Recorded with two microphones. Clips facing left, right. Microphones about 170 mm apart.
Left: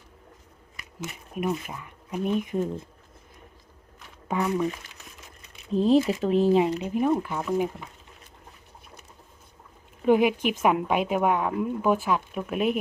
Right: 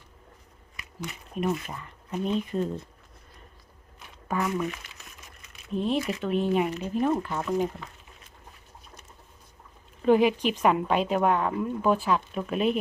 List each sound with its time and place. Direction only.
1.6 s a woman's voice: 10° left (ahead or behind)
4.3 s a woman's voice: 15° left (ahead or behind)
5.7 s speech: 35° left (ahead or behind)
6.7 s a woman's voice: 15° left (ahead or behind)
10.0 s a woman's voice: 10° left (ahead or behind)